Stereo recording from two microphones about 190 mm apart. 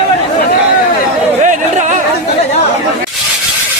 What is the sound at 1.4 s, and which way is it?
Chatter, 40° right (ahead or behind).